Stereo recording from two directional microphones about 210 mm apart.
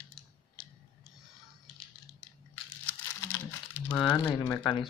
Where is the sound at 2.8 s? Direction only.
10° left (ahead or behind).